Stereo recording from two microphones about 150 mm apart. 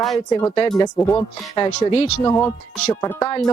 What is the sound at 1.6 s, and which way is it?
Speech, 45° left (ahead or behind).